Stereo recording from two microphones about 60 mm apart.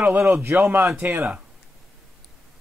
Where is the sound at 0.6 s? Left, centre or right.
Right.